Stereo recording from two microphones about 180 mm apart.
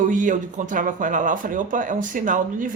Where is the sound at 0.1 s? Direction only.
45° right (ahead or behind).